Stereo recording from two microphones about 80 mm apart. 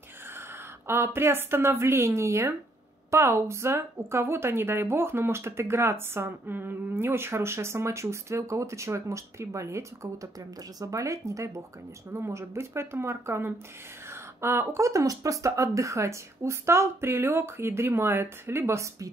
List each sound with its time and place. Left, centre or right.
0.8 s a woman's voice: right